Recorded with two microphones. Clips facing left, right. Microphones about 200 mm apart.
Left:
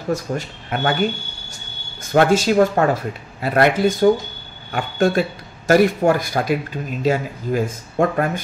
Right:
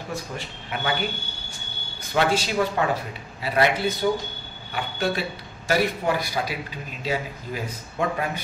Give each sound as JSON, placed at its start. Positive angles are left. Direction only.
{"t": 0.1, "sound": "speech", "side_deg": 45}
{"t": 2.1, "sound": "speech", "side_deg": 50}